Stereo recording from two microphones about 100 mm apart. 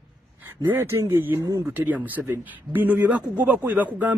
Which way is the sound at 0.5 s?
25° right (ahead or behind).